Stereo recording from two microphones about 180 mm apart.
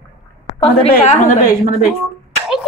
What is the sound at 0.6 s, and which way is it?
Speech, 30° left (ahead or behind).